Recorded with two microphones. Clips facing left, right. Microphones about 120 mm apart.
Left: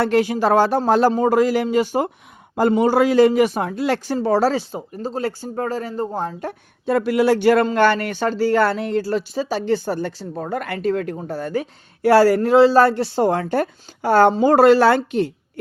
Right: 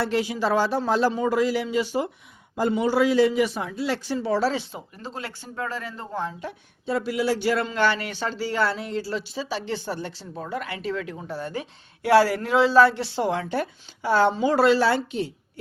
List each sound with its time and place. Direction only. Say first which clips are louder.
0.0 s a man's voice: left 7 dB; 50° left (ahead or behind)